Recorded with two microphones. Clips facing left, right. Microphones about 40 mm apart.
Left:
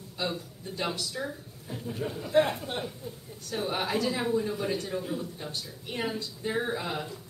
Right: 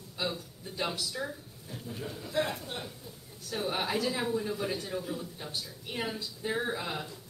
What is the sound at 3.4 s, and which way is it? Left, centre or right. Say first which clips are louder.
Speech: left 2 dB; centre.